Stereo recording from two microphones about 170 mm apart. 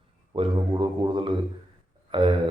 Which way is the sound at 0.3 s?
30° right (ahead or behind).